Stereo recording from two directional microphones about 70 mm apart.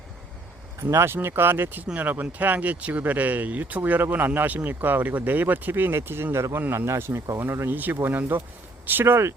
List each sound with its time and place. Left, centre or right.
0.8 s speech: right